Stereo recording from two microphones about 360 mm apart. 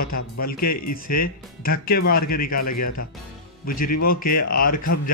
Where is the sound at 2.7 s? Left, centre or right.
Left.